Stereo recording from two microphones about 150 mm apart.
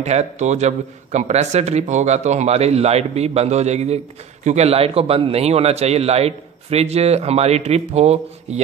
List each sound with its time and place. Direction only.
0.0 s a man's voice: 50° right (ahead or behind)